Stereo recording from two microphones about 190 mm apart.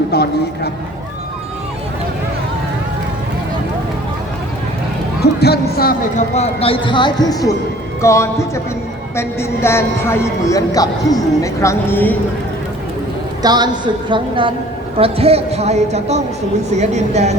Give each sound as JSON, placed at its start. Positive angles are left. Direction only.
{"t": 0.1, "sound": "a sound", "side_deg": 55}
{"t": 5.2, "sound": "speech", "side_deg": 60}
{"t": 6.3, "sound": "speech", "side_deg": 30}
{"t": 13.4, "sound": "a woman's voice", "side_deg": -20}